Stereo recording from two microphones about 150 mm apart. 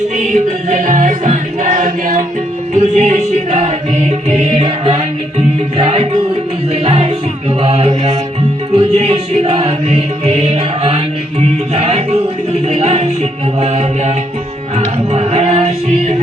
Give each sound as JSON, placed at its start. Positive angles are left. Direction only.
{"t": 0.2, "sound": "music", "side_deg": -55}
{"t": 12.6, "sound": "speech", "side_deg": -45}
{"t": 13.6, "sound": "music", "side_deg": -45}